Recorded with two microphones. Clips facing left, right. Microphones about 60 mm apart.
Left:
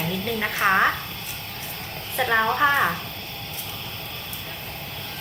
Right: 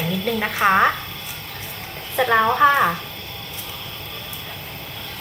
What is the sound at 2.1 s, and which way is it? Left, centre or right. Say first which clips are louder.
Speech: right 4 dB; centre.